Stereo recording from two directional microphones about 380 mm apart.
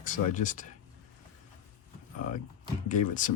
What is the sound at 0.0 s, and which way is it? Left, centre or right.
Speech, centre.